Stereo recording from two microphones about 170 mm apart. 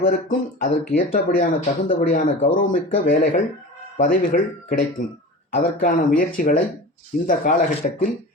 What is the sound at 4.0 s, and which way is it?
Speech, 60° left (ahead or behind).